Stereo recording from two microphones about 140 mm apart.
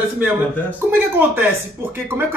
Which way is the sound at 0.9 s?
15° right (ahead or behind).